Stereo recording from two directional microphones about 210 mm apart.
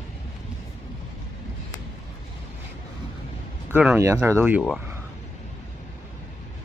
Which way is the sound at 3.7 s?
10° right (ahead or behind).